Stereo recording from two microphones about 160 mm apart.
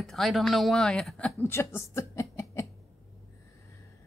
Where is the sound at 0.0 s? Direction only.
Centre (ahead or behind).